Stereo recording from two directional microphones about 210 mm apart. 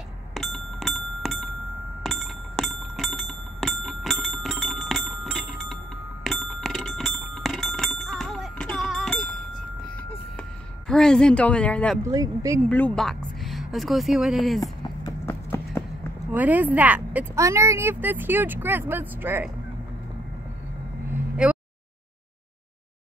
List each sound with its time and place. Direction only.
0.3 s bicycle bell: centre (ahead or behind)
10.9 s a woman's voice: 5° left (ahead or behind)
12.0 s speech: 15° right (ahead or behind)
12.6 s speech: 5° left (ahead or behind)
14.6 s clip-clop: 15° left (ahead or behind)
16.3 s speech: 10° right (ahead or behind)
21.4 s a sound: 5° right (ahead or behind)